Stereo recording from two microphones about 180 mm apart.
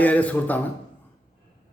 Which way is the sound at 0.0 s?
10° left (ahead or behind).